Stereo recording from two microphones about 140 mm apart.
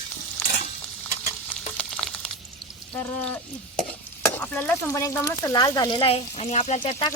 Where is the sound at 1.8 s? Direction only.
5° left (ahead or behind).